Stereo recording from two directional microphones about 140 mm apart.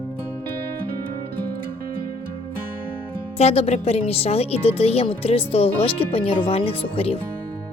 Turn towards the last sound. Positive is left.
turn(degrees=45)  # may be behind; listen again after turning